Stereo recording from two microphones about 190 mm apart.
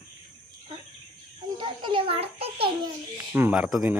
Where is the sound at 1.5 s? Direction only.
25° right (ahead or behind).